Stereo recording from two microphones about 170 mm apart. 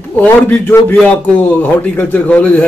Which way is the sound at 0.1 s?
5° left (ahead or behind).